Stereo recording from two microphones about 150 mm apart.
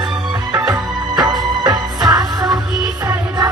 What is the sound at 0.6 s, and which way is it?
Music, 25° right (ahead or behind).